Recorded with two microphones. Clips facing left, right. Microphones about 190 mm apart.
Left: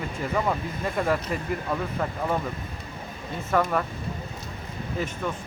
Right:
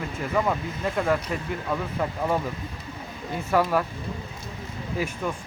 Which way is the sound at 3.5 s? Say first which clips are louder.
Right 1 dB; 5° right (ahead or behind).